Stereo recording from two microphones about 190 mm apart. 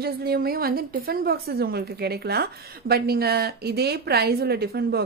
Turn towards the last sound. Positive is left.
turn(degrees=-55)  # may be behind; listen again after turning